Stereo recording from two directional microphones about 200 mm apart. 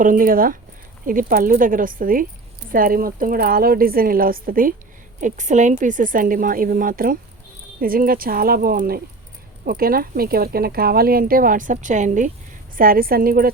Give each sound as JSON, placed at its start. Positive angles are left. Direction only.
{"t": 0.0, "sound": "speech", "side_deg": -40}